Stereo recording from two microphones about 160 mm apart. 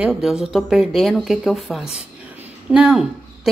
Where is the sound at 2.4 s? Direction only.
5° right (ahead or behind).